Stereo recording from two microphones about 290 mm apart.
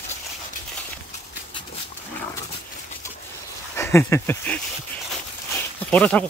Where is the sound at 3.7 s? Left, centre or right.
Centre.